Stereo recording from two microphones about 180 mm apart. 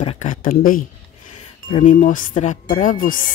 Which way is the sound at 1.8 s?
45° left (ahead or behind).